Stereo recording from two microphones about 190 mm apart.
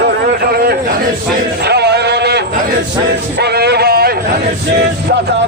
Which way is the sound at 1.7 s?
60° right (ahead or behind).